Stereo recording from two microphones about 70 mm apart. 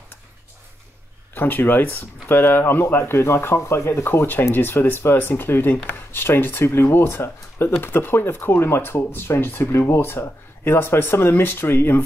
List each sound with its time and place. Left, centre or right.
1.3 s speech: left